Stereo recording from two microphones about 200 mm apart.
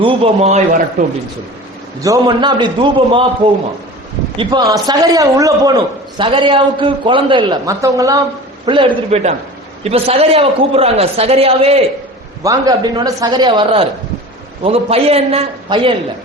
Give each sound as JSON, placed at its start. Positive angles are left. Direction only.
{"t": 0.0, "sound": "a man's voice", "side_deg": -30}
{"t": 2.0, "sound": "a man's voice", "side_deg": -15}
{"t": 4.4, "sound": "a man's voice", "side_deg": -20}
{"t": 12.4, "sound": "a man's voice", "side_deg": -20}